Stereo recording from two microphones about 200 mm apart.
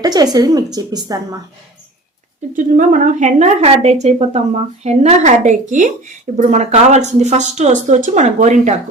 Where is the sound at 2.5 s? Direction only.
40° right (ahead or behind).